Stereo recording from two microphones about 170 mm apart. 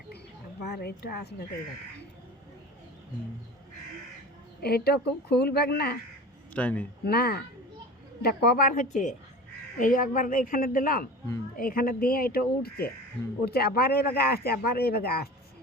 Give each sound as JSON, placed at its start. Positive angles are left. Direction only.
{"t": 0.6, "sound": "speech", "side_deg": 70}
{"t": 4.6, "sound": "speech", "side_deg": 70}
{"t": 6.5, "sound": "speech", "side_deg": 10}
{"t": 7.0, "sound": "a woman's voice", "side_deg": 65}